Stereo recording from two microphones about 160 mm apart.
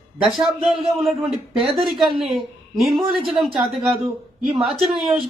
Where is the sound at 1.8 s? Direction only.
Centre (ahead or behind).